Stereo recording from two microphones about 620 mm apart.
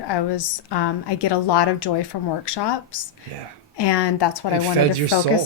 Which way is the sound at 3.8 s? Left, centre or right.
Left.